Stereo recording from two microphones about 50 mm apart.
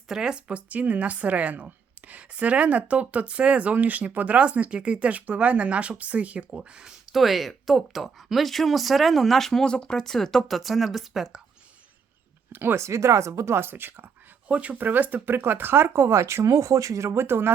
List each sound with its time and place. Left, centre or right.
0.1 s speech: centre
7.1 s speech: centre
12.5 s speech: right
12.8 s speech: right
13.6 s speech: right
14.4 s speech: right
14.8 s speech: right